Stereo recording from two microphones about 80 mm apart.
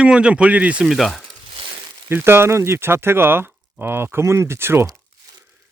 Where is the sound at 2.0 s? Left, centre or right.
Right.